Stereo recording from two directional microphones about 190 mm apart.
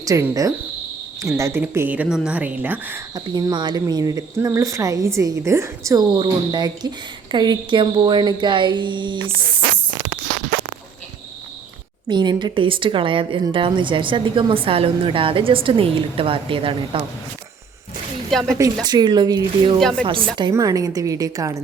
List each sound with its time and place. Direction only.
0.0 s a woman's voice: 20° right (ahead or behind)
3.2 s speech: 20° right (ahead or behind)
12.0 s speech: 25° right (ahead or behind)
18.3 s speech: centre (ahead or behind)
18.5 s a woman's voice: 20° right (ahead or behind)